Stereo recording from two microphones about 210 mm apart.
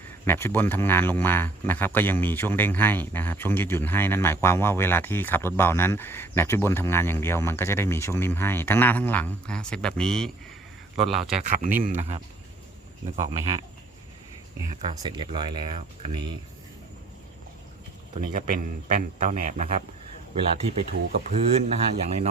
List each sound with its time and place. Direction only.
0.3 s speech: 10° left (ahead or behind)
11.1 s speech: 35° right (ahead or behind)
13.1 s speech: 20° right (ahead or behind)
14.7 s speech: 25° right (ahead or behind)
18.1 s speech: 40° right (ahead or behind)
21.1 s speech: 35° right (ahead or behind)